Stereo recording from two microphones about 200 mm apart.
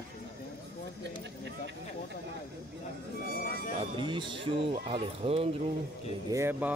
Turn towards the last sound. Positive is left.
turn(degrees=-10)  # may be behind; listen again after turning